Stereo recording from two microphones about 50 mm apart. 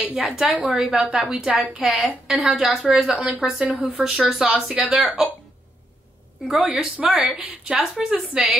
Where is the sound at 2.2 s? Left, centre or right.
Centre.